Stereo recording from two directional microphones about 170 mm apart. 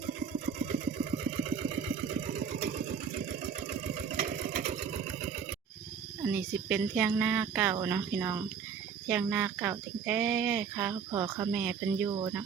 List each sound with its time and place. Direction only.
0.0 s engine: 50° right (ahead or behind)
1.2 s sewing machine: 40° right (ahead or behind)
2.2 s vehicle: 45° right (ahead or behind)
2.7 s engine: 50° right (ahead or behind)
6.2 s speech: 5° right (ahead or behind)
11.1 s speech: 20° right (ahead or behind)
11.5 s speech: 5° right (ahead or behind)
12.0 s speech: 20° right (ahead or behind)